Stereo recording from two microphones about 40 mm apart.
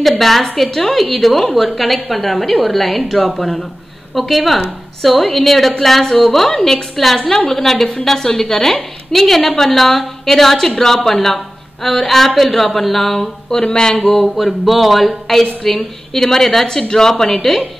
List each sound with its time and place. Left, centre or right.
0.2 s a woman's voice: centre
13.6 s speech: centre
14.2 s a woman's voice: centre